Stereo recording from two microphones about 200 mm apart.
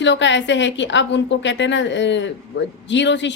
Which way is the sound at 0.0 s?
65° left (ahead or behind).